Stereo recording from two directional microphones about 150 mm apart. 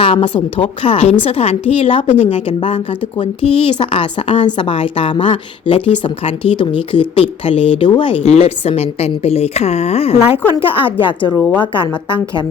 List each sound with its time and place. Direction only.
0.0 s a woman's voice: 35° left (ahead or behind)
11.3 s a woman's voice: 5° left (ahead or behind)
11.6 s a woman's voice: 30° left (ahead or behind)